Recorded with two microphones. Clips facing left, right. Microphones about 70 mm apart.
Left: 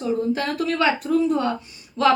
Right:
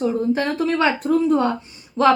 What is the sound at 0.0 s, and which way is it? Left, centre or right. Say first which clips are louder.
A woman's voice: right 3 dB; right.